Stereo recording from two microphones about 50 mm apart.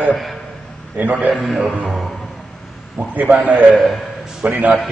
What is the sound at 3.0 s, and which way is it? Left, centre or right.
A man's voice, right.